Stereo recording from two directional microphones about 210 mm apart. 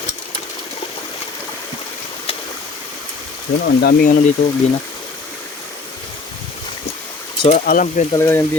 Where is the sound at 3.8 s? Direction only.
40° left (ahead or behind).